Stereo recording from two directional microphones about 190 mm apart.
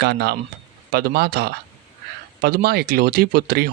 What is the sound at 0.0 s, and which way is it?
Speech, 60° right (ahead or behind).